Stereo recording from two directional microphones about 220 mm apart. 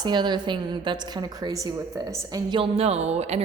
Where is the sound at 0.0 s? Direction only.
20° right (ahead or behind).